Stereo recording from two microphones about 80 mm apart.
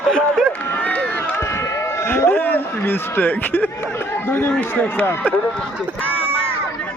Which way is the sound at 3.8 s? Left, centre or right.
Left.